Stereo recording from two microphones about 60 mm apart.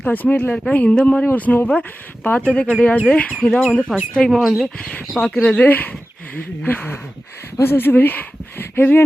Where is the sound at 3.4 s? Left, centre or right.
Centre.